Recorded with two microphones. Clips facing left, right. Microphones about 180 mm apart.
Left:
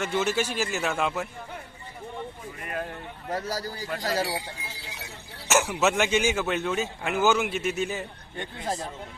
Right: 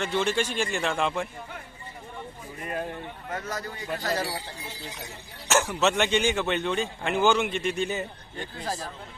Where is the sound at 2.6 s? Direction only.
20° right (ahead or behind).